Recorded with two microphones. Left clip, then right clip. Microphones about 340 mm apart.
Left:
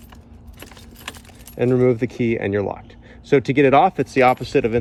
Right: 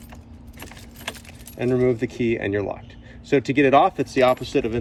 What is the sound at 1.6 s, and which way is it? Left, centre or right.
Speech, centre.